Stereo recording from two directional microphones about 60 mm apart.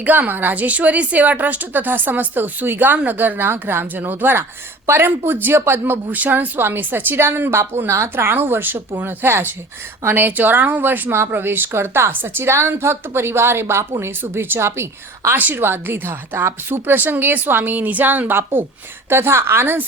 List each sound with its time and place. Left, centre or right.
0.0 s a woman's voice: right
15.4 s a woman's voice: right